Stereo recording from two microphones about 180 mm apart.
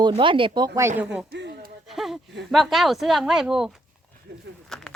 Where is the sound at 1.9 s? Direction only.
Centre (ahead or behind).